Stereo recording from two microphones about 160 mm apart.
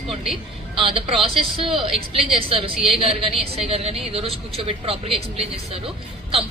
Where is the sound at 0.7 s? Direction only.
35° right (ahead or behind).